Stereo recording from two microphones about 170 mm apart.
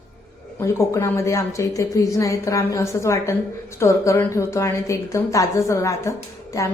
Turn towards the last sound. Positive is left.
turn(degrees=20)  # may be behind; listen again after turning